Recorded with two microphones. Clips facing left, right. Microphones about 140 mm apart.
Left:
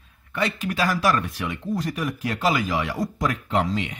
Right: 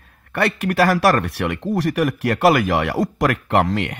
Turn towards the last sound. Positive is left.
turn(degrees=-65)  # may be behind; listen again after turning